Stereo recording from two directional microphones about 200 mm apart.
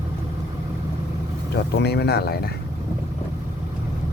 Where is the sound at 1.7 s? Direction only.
55° left (ahead or behind).